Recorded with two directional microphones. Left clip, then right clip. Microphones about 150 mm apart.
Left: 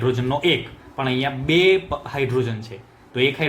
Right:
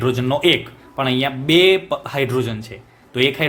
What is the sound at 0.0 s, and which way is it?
Speech, 40° right (ahead or behind).